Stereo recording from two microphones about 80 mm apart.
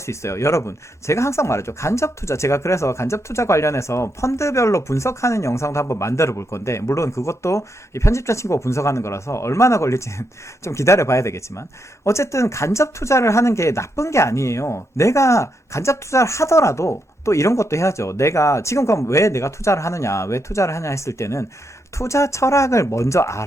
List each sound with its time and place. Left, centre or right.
0.0 s speech: left